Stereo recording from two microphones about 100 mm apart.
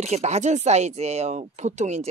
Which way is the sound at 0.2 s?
90° right.